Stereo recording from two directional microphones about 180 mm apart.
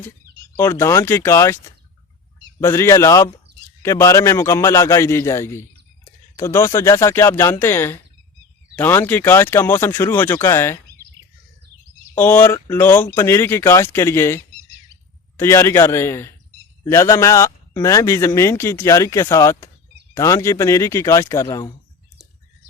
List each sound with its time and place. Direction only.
0.5 s a man's voice: 15° left (ahead or behind)
2.6 s a man's voice: 15° left (ahead or behind)
12.1 s a man's voice: 10° left (ahead or behind)
21.4 s speech: 25° left (ahead or behind)